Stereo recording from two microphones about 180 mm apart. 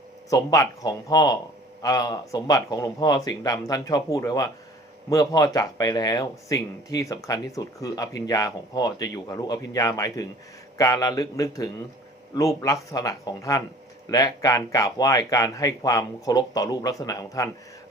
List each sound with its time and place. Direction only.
0.3 s speech: 20° left (ahead or behind)